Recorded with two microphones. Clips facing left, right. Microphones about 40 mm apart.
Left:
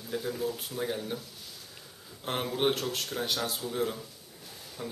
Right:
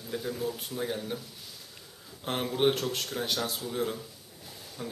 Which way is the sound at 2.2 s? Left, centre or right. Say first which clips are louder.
Right 2 dB; centre.